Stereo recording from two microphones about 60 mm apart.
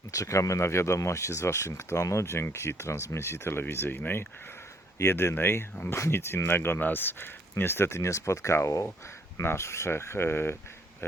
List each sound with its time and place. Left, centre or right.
0.1 s speech: left